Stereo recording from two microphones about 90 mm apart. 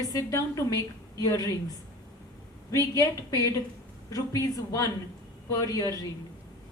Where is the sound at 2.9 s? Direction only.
40° left (ahead or behind).